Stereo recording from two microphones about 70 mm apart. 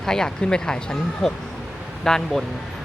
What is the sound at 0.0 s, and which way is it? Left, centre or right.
Speech, centre.